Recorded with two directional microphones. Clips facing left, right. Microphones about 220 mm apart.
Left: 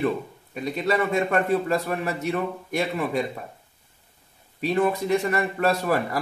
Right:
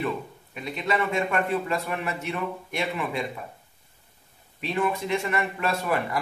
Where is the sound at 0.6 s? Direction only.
40° left (ahead or behind).